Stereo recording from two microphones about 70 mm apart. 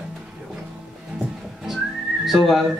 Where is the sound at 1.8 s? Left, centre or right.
Centre.